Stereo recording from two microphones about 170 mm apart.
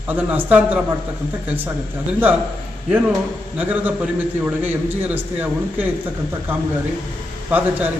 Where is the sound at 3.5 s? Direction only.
10° right (ahead or behind).